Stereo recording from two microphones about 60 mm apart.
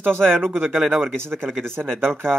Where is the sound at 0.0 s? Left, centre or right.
Right.